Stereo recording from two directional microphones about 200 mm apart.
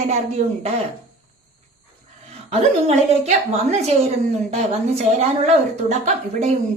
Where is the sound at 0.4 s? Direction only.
40° right (ahead or behind).